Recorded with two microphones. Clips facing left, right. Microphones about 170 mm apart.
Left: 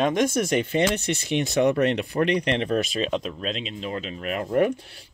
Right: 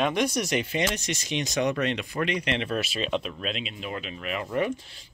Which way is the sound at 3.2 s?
35° left (ahead or behind).